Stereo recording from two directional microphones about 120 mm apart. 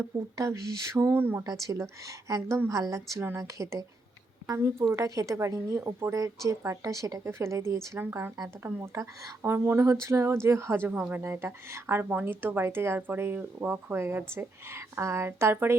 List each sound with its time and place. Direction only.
0.0 s speech: 25° right (ahead or behind)
1.5 s speech: 30° right (ahead or behind)